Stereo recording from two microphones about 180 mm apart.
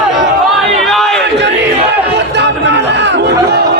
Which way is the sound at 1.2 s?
70° right (ahead or behind).